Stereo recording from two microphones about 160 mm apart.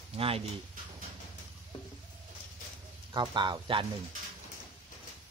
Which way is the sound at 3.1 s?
30° right (ahead or behind).